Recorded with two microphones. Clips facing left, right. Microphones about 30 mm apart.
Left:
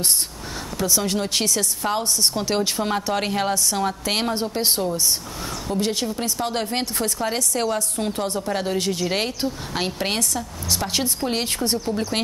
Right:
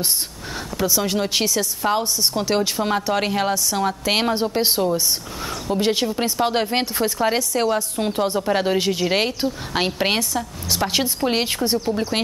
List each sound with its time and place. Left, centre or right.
0.8 s a woman's voice: centre
5.5 s a woman's voice: right
11.8 s a woman's voice: right